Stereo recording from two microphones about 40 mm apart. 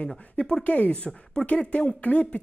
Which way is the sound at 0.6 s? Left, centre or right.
Left.